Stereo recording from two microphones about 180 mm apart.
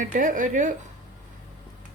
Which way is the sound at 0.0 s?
45° right (ahead or behind).